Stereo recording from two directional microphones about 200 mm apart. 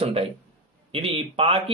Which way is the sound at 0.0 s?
30° right (ahead or behind).